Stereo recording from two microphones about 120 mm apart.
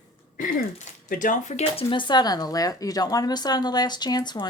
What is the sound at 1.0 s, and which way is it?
Speech, 90° left.